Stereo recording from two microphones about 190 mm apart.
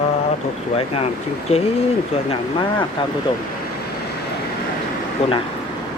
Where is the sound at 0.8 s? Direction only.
30° left (ahead or behind).